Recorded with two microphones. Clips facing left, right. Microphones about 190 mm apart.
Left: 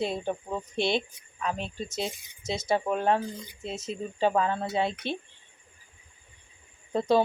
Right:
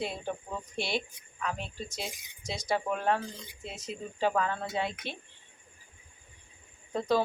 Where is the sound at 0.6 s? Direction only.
25° left (ahead or behind).